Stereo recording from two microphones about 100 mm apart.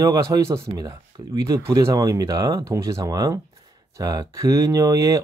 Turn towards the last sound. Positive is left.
turn(degrees=-35)  # may be behind; listen again after turning